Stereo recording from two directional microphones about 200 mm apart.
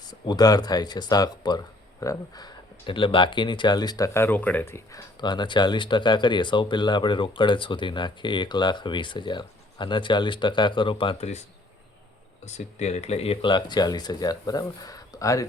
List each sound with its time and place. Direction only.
0.3 s speech: 20° left (ahead or behind)
5.2 s speech: 20° left (ahead or behind)
12.5 s speech: 35° left (ahead or behind); by 15.4 s 15° left (ahead or behind)